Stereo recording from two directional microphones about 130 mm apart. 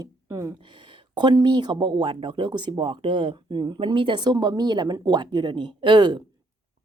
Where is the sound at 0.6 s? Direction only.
40° right (ahead or behind).